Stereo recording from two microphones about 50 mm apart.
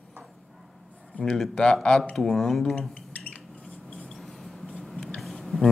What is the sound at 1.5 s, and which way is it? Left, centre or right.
Speech, centre.